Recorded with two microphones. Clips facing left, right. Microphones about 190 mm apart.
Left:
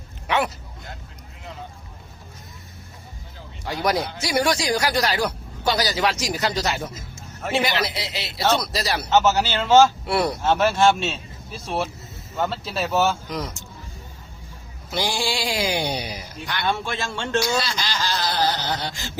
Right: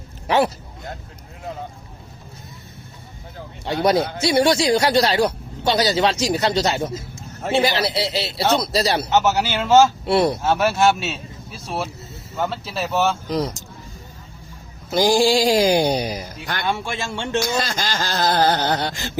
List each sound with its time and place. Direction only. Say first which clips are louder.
0.3 s speech: right 5 dB; 35° right (ahead or behind)
3.7 s speech: right 5 dB; 25° right (ahead or behind)
9.0 s speech: even; 10° right (ahead or behind)
10.1 s speech: right 5 dB; 25° right (ahead or behind)
10.4 s speech: right 1 dB; 10° right (ahead or behind)
13.3 s speech: right 7 dB; 35° right (ahead or behind)
14.8 s speech: right 9 dB; 40° right (ahead or behind)
16.6 s speech: even; 10° right (ahead or behind)
17.6 s speech: right 3 dB; 45° right (ahead or behind)